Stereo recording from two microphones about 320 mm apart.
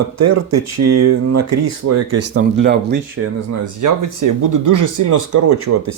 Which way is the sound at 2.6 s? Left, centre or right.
Right.